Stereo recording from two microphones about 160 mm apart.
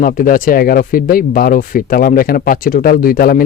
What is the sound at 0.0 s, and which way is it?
Speech, 60° left (ahead or behind).